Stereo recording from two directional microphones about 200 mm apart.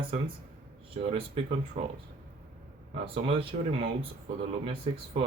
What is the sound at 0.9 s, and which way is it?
Speech, 35° right (ahead or behind).